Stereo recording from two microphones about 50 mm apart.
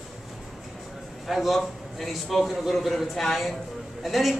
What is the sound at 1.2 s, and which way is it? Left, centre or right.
A man's voice, centre.